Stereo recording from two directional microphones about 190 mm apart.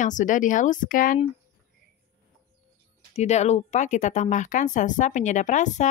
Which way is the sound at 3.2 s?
35° left (ahead or behind).